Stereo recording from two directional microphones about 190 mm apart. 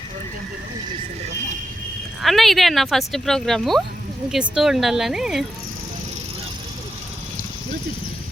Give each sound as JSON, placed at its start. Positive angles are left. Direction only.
{"t": 2.2, "sound": "speech", "side_deg": 0}